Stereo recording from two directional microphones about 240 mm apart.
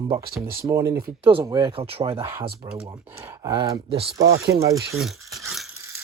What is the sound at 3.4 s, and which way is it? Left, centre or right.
Speech, centre.